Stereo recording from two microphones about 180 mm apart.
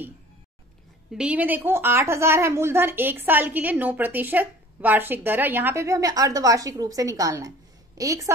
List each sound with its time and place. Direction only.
1.1 s a woman's voice: 5° right (ahead or behind)